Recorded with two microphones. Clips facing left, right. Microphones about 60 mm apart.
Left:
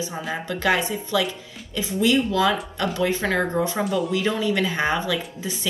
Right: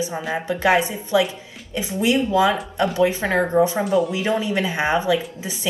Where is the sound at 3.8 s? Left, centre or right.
Centre.